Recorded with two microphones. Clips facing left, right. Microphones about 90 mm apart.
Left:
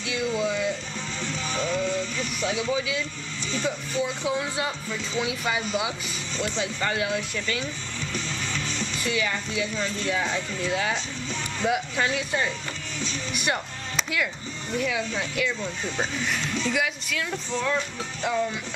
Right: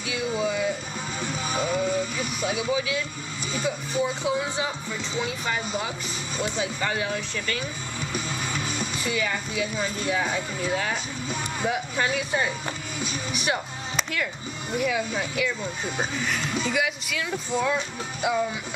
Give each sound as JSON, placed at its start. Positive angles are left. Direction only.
{"t": 0.0, "sound": "a sound", "side_deg": -5}
{"t": 1.2, "sound": "speech", "side_deg": -10}
{"t": 6.3, "sound": "speech", "side_deg": -10}
{"t": 8.0, "sound": "music", "side_deg": -10}
{"t": 9.6, "sound": "speech", "side_deg": -10}